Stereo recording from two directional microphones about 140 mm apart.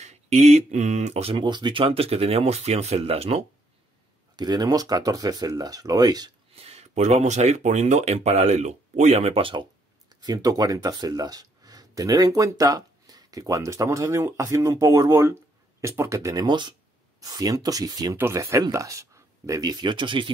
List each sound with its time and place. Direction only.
0.0 s speech: 50° right (ahead or behind)
4.4 s speech: 30° right (ahead or behind)
6.5 s speech: 45° right (ahead or behind)
10.2 s speech: 25° right (ahead or behind)